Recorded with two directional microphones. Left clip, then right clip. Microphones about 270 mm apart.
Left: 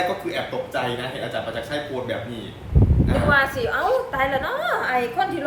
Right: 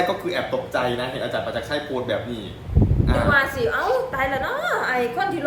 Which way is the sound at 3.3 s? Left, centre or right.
Centre.